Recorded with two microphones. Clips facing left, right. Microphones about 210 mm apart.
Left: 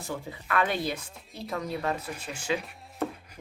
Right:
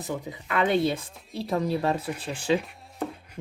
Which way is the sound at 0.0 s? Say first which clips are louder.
Right 3 dB; 20° right (ahead or behind).